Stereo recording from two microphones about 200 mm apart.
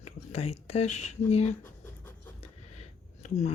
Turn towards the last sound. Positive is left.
turn(degrees=35)  # may be behind; listen again after turning